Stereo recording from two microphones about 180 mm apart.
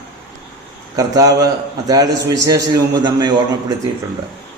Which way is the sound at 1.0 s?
20° right (ahead or behind).